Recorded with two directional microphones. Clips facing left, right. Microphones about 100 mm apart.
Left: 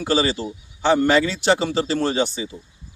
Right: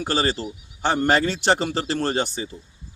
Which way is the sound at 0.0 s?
45° right (ahead or behind).